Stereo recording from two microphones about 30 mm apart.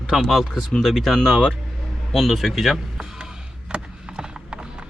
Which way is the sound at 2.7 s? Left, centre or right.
Centre.